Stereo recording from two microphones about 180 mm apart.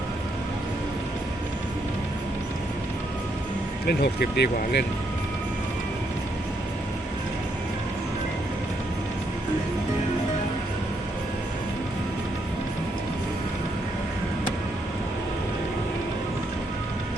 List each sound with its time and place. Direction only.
3.8 s speech: 65° left (ahead or behind)